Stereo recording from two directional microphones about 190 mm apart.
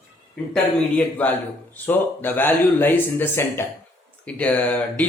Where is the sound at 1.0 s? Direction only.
10° left (ahead or behind).